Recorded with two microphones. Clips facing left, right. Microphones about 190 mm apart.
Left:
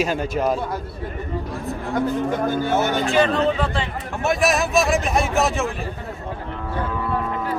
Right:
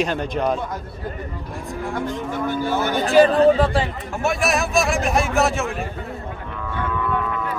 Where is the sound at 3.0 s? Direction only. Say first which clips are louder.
Right 10 dB; 35° right (ahead or behind).